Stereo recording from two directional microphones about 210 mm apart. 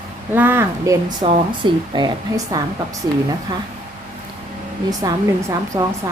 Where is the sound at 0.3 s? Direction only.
10° right (ahead or behind).